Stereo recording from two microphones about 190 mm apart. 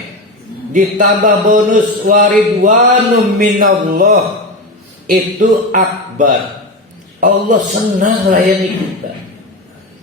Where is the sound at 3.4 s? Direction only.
45° right (ahead or behind).